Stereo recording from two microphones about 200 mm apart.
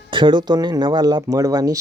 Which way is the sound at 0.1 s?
25° right (ahead or behind).